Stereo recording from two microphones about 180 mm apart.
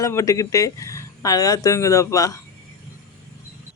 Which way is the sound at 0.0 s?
15° left (ahead or behind).